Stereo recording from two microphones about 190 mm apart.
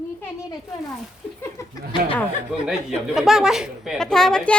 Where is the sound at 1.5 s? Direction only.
25° left (ahead or behind).